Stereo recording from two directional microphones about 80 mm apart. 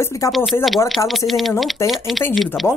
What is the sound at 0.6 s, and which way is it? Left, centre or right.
Speech, centre.